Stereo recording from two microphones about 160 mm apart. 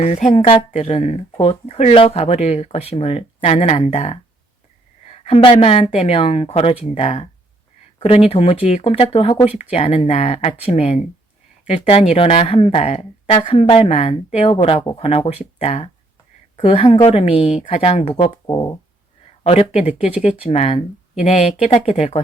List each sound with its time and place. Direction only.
0.0 s a woman's voice: 45° left (ahead or behind)